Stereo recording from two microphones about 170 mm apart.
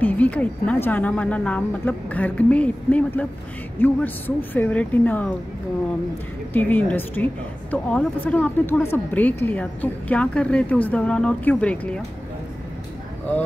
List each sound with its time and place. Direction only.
0.0 s a woman's voice: 10° left (ahead or behind)
6.5 s a woman's voice: 10° left (ahead or behind)